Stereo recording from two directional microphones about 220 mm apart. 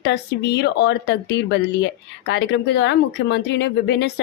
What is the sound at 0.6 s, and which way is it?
Speech, 50° left (ahead or behind).